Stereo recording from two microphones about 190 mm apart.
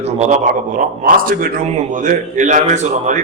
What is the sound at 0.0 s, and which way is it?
A man's voice, 35° right (ahead or behind).